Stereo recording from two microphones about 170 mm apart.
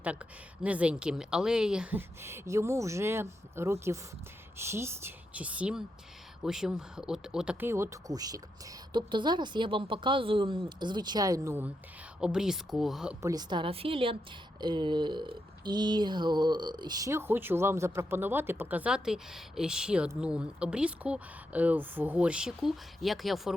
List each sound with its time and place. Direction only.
0.6 s a sound: 10° right (ahead or behind)
6.4 s speech: 5° right (ahead or behind)
12.2 s speech: 5° right (ahead or behind)
13.2 s a woman's voice: 25° right (ahead or behind)
14.6 s a sound: 25° right (ahead or behind); by 20.1 s 5° right (ahead or behind)
20.2 s speech: 5° right (ahead or behind)